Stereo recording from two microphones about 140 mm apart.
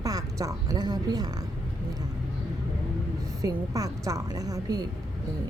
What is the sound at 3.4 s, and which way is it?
A woman's voice, 25° right (ahead or behind).